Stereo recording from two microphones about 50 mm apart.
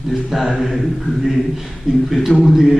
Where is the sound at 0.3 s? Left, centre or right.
Centre.